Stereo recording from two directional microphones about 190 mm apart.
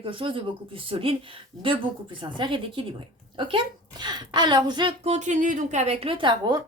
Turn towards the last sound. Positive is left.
turn(degrees=-25)  # may be behind; listen again after turning